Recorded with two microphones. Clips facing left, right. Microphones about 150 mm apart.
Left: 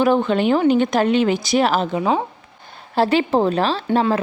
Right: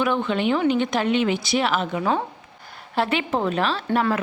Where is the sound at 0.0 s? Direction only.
35° left (ahead or behind).